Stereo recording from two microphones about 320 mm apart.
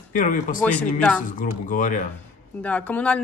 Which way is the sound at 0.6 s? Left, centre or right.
Centre.